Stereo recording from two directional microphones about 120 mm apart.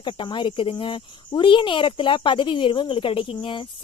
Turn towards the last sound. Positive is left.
turn(degrees=45)  # may be behind; listen again after turning